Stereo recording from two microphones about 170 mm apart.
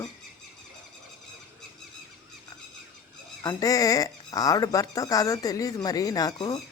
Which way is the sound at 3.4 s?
20° left (ahead or behind).